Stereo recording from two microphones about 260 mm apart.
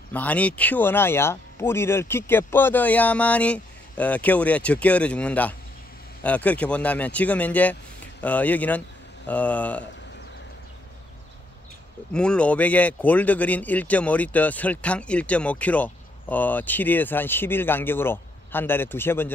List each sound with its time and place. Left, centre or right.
0.1 s speech: centre
12.1 s speech: centre